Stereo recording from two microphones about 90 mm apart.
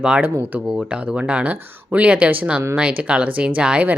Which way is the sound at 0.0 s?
10° right (ahead or behind).